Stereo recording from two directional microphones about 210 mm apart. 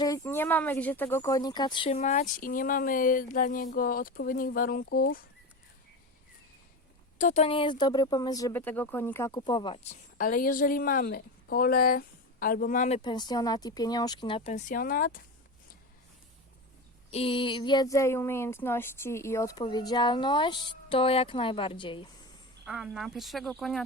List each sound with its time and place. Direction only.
0.0 s speech: 15° left (ahead or behind); by 5.2 s 45° left (ahead or behind)
7.2 s speech: 35° left (ahead or behind)
9.9 s a woman's voice: 40° left (ahead or behind)
13.0 s speech: 20° left (ahead or behind); by 15.2 s 40° left (ahead or behind)
17.1 s speech: 25° left (ahead or behind)
22.6 s speech: 5° right (ahead or behind)